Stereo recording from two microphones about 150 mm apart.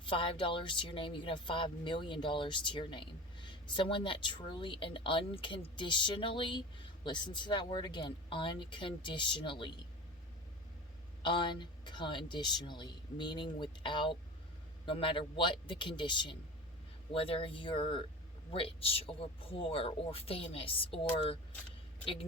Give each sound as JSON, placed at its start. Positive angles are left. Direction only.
{"t": 0.0, "sound": "speech", "side_deg": 35}
{"t": 11.2, "sound": "speech", "side_deg": 30}